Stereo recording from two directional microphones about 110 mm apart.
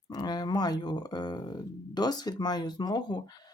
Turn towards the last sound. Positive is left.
turn(degrees=40)  # may be behind; listen again after turning